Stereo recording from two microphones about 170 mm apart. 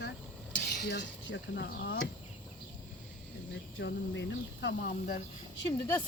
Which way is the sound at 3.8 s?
90° left.